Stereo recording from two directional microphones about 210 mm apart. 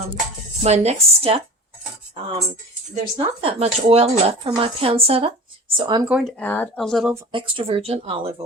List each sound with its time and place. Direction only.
0.6 s speech: 30° right (ahead or behind)
2.9 s speech: 30° right (ahead or behind)
6.1 s speech: 5° right (ahead or behind)
6.4 s speech: 10° left (ahead or behind)
7.3 s speech: 25° right (ahead or behind)